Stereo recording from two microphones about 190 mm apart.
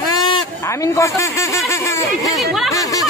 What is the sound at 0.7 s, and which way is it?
Speech, 15° left (ahead or behind).